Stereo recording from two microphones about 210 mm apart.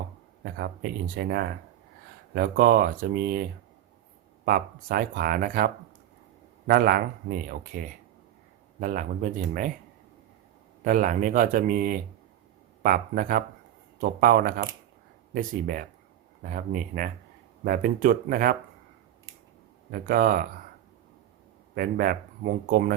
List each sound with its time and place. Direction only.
0.5 s speech: 45° right (ahead or behind)
4.4 s speech: 45° right (ahead or behind)
10.8 s speech: 40° right (ahead or behind)
19.9 s speech: 40° right (ahead or behind)
21.8 s speech: 45° right (ahead or behind)